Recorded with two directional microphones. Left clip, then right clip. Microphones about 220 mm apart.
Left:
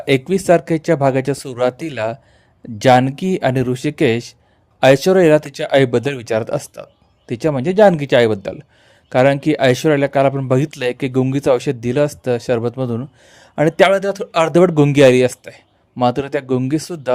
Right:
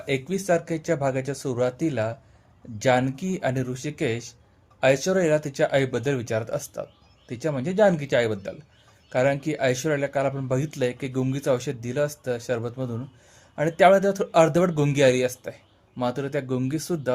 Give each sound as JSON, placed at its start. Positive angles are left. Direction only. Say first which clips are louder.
{"t": 0.0, "sound": "a man's voice", "louder": "left 11 dB", "side_deg": 40}